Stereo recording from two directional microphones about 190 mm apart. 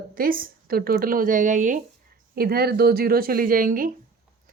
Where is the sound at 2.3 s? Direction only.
55° right (ahead or behind).